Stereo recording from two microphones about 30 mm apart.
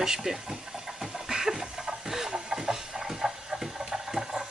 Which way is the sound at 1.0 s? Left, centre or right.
Centre.